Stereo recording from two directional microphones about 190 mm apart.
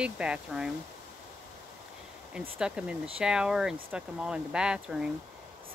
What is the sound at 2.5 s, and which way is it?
Speech, 5° right (ahead or behind).